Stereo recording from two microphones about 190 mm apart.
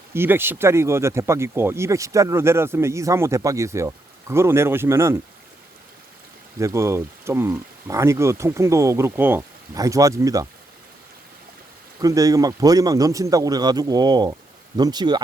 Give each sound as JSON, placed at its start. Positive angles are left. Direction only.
{"t": 0.1, "sound": "speech", "side_deg": -10}
{"t": 6.6, "sound": "speech", "side_deg": -15}
{"t": 11.9, "sound": "a man's voice", "side_deg": -20}